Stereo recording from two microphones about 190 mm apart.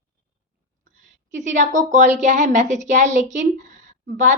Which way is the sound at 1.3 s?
40° right (ahead or behind).